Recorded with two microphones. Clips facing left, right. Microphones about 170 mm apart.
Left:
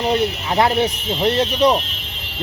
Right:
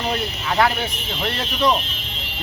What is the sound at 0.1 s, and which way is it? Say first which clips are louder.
Speech: left 6 dB; 20° left (ahead or behind).